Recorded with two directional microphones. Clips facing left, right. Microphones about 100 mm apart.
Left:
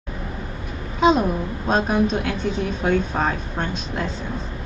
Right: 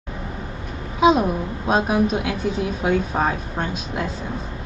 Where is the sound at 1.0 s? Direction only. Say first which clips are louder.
Right 1 dB; 10° right (ahead or behind).